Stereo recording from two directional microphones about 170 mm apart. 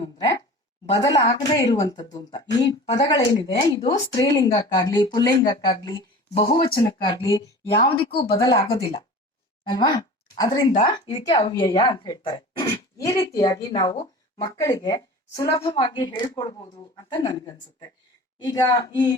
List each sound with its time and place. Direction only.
0.2 s a sound: 25° left (ahead or behind)
1.2 s speech: 20° left (ahead or behind)
7.0 s speech: 25° left (ahead or behind)
8.6 s speech: 35° left (ahead or behind)